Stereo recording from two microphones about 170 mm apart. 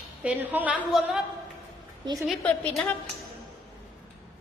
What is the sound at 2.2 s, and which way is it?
Speech, 5° left (ahead or behind).